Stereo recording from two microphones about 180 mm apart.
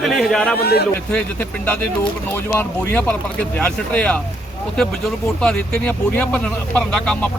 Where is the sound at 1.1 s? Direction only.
10° left (ahead or behind).